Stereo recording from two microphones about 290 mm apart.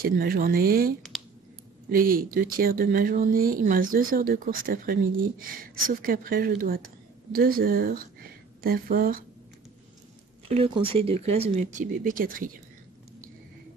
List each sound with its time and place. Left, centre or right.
0.0 s speech: right
10.5 s speech: centre